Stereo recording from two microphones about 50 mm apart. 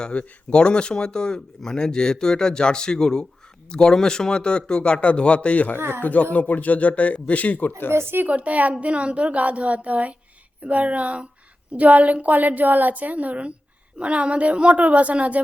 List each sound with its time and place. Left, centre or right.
0.0 s speech: left
5.7 s speech: right
6.0 s speech: left
7.9 s speech: right
8.3 s a woman's voice: right